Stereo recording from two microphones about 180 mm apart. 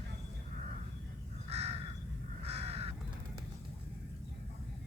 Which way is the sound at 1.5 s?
35° right (ahead or behind).